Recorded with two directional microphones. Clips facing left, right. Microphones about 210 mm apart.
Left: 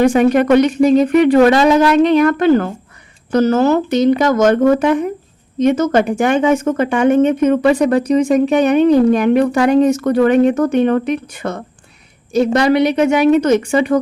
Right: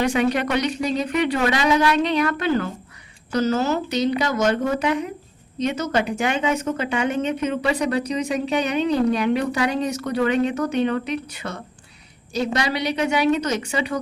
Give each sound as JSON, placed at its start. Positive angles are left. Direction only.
{"t": 0.0, "sound": "speech", "side_deg": 50}